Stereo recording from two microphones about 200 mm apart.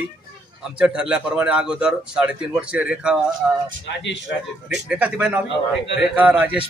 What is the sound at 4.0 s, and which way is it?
Speech, 65° left (ahead or behind).